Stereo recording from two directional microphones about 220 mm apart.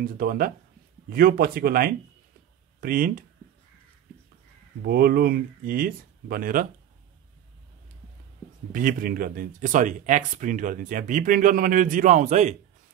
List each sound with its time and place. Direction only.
0.0 s speech: 40° right (ahead or behind)
4.8 s speech: 45° right (ahead or behind)
8.7 s speech: 40° right (ahead or behind)